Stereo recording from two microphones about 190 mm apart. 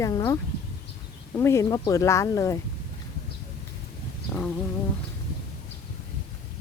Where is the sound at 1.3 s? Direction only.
15° left (ahead or behind).